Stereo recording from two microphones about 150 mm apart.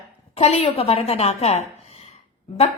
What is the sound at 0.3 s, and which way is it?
A woman's voice, 45° left (ahead or behind).